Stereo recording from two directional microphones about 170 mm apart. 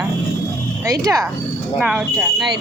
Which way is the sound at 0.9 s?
20° right (ahead or behind).